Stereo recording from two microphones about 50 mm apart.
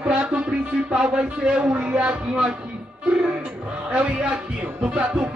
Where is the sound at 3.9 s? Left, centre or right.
Right.